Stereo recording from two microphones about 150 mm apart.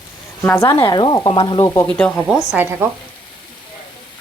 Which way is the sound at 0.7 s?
30° left (ahead or behind).